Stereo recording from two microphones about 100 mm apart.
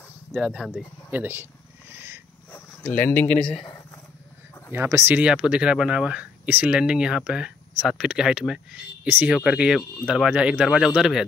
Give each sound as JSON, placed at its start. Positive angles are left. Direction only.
{"t": 0.3, "sound": "speech", "side_deg": -5}
{"t": 1.1, "sound": "speech", "side_deg": -20}
{"t": 2.8, "sound": "speech", "side_deg": 20}
{"t": 4.7, "sound": "speech", "side_deg": -25}
{"t": 5.2, "sound": "speech", "side_deg": -10}
{"t": 10.3, "sound": "speech", "side_deg": -10}